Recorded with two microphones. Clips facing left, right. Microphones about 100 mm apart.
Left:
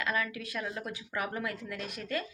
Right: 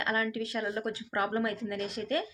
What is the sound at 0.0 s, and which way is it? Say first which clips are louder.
Speech: right 2 dB; 30° right (ahead or behind).